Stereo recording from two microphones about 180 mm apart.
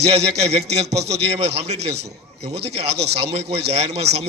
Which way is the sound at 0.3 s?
35° right (ahead or behind).